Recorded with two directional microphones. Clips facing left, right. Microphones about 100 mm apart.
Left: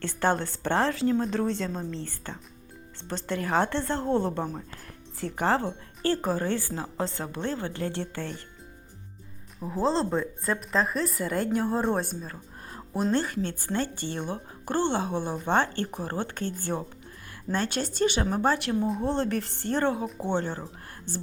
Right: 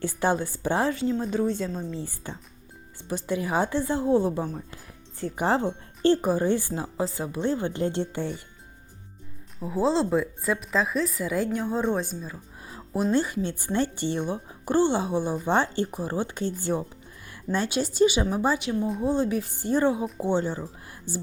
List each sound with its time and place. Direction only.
0.0 s speech: 10° right (ahead or behind)
7.4 s speech: 20° right (ahead or behind)
9.6 s speech: 5° right (ahead or behind)
17.5 s speech: 10° right (ahead or behind)